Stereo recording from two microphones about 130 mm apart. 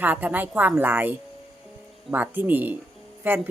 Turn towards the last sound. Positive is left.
turn(degrees=-15)  # may be behind; listen again after turning